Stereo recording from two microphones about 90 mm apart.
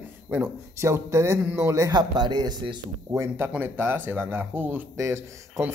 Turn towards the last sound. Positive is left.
turn(degrees=-30)  # may be behind; listen again after turning